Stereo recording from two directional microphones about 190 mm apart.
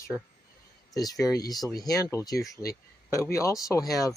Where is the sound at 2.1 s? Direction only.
20° left (ahead or behind).